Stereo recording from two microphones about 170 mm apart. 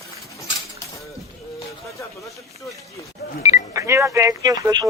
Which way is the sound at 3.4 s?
20° right (ahead or behind).